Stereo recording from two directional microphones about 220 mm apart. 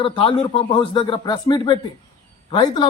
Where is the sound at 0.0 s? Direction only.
25° left (ahead or behind).